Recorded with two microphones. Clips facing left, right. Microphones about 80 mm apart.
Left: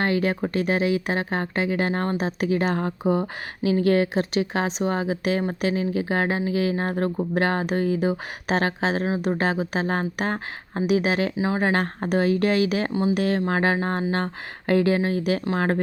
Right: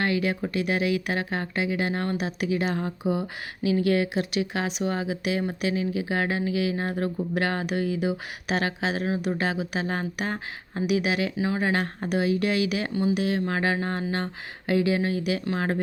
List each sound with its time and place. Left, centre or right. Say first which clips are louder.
0.0 s speech: left 3 dB; left